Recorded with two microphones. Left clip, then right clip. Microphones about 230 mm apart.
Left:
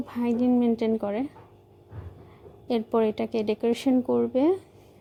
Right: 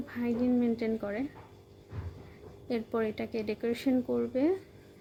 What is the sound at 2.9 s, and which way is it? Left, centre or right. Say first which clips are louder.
Speech: left 9 dB; left.